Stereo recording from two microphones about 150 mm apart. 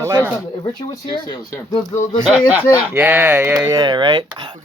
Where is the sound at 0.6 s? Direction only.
30° left (ahead or behind).